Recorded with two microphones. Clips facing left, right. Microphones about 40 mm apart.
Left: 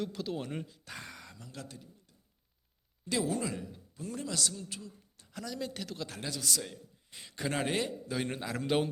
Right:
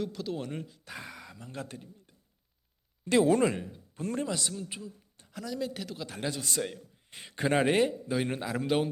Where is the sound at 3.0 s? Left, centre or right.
Right.